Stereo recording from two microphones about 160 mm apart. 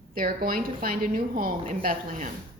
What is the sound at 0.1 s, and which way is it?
A woman's voice, 60° right (ahead or behind).